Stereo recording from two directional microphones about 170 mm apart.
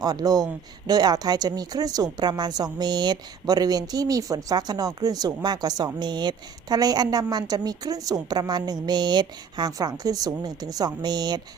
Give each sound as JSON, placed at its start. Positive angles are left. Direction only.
{"t": 0.0, "sound": "speech", "side_deg": -25}